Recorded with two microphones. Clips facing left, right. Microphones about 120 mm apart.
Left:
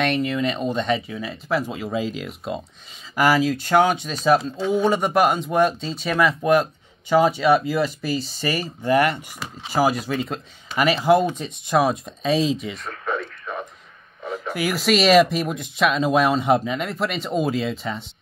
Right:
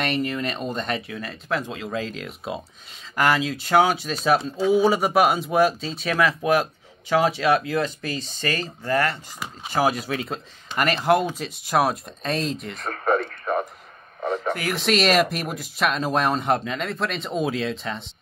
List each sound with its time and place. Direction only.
0.0 s a man's voice: centre (ahead or behind); by 9.2 s 15° left (ahead or behind)
9.7 s a man's voice: centre (ahead or behind)
12.9 s radio: 50° right (ahead or behind)
14.2 s a sound: 50° right (ahead or behind)
14.5 s a man's voice: 5° left (ahead or behind)